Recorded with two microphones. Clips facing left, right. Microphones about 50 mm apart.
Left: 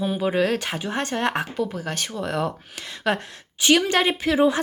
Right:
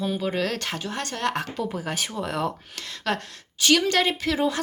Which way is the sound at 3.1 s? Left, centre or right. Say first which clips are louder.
Left 4 dB; centre.